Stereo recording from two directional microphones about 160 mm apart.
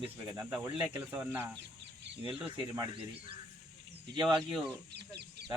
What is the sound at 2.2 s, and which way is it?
Speech, 35° right (ahead or behind).